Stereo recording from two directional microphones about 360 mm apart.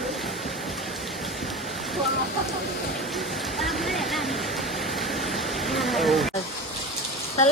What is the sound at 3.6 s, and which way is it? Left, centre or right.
Waterfall, centre.